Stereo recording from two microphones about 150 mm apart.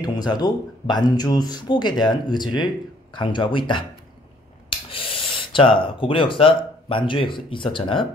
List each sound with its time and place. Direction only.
0.0 s speech: 25° left (ahead or behind)